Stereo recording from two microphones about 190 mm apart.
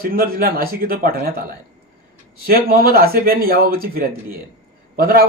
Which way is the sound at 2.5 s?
55° right (ahead or behind).